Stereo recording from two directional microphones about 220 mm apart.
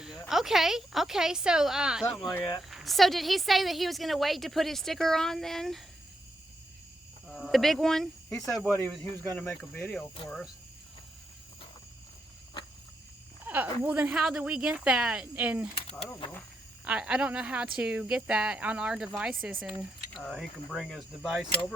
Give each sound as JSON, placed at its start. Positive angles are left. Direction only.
{"t": 0.0, "sound": "a woman's voice", "side_deg": 0}
{"t": 2.2, "sound": "speech", "side_deg": 20}
{"t": 2.6, "sound": "a woman's voice", "side_deg": 0}
{"t": 7.3, "sound": "a woman's voice", "side_deg": 0}
{"t": 13.4, "sound": "a woman's voice", "side_deg": -10}
{"t": 16.8, "sound": "a woman's voice", "side_deg": -5}